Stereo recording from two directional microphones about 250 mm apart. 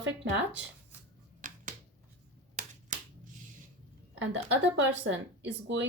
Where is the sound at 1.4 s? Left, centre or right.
Right.